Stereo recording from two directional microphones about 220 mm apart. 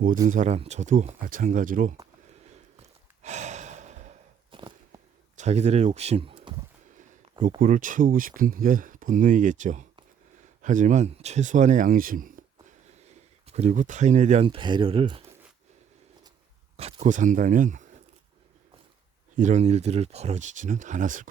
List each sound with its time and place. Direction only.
0.3 s speech: 35° right (ahead or behind)
2.8 s sigh: 30° right (ahead or behind)
4.5 s a sound: 20° right (ahead or behind)
5.4 s speech: 30° right (ahead or behind)
7.4 s speech: 35° right (ahead or behind)
13.5 s speech: 30° right (ahead or behind)
16.7 s speech: 30° right (ahead or behind)
19.4 s speech: 30° right (ahead or behind)